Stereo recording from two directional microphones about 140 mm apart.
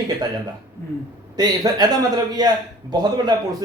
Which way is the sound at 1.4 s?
30° right (ahead or behind).